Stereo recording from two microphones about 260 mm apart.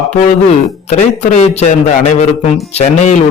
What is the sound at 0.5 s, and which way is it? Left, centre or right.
A man's voice, left.